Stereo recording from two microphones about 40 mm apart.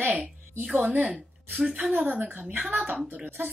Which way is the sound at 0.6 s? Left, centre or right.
Right.